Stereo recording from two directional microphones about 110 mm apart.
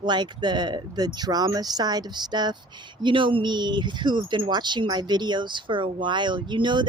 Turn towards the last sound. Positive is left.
turn(degrees=-45)  # may be behind; listen again after turning